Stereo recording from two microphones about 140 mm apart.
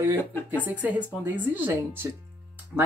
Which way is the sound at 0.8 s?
10° right (ahead or behind).